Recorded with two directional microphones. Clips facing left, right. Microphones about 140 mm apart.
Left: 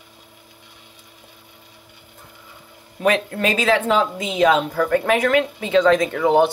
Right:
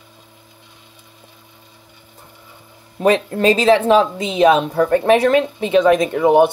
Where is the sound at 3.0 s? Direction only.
30° right (ahead or behind).